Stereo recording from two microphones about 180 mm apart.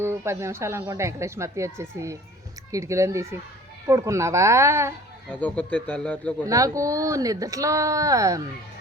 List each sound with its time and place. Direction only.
0.0 s speech: 15° right (ahead or behind)
5.3 s speech: 10° left (ahead or behind)
6.5 s speech: 20° right (ahead or behind)